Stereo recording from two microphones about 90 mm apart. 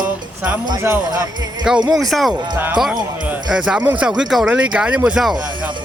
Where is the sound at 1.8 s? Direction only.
Centre (ahead or behind).